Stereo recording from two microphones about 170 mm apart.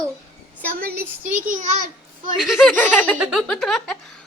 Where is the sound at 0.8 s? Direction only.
65° right (ahead or behind).